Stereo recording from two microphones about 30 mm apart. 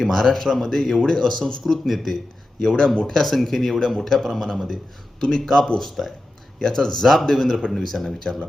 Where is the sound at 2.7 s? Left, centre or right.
Left.